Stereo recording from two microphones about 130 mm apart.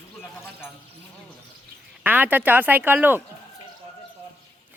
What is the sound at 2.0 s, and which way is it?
A woman's voice, 15° right (ahead or behind).